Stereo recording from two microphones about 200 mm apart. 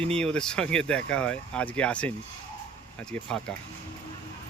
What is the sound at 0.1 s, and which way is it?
Speech, 5° left (ahead or behind).